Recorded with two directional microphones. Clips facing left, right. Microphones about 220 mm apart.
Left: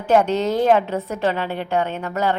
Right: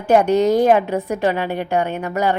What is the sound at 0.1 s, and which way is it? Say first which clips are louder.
A woman's voice: right 4 dB; 15° right (ahead or behind).